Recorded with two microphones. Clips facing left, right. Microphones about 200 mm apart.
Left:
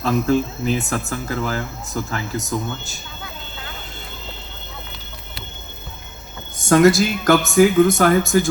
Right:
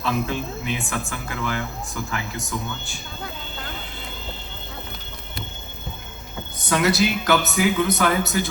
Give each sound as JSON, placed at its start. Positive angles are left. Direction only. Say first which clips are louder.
{"t": 0.0, "sound": "speech", "louder": "left 7 dB", "side_deg": 45}
{"t": 6.6, "sound": "a woman's voice", "louder": "left 7 dB", "side_deg": 45}